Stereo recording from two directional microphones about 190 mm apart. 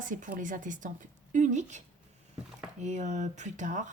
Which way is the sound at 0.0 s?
45° right (ahead or behind).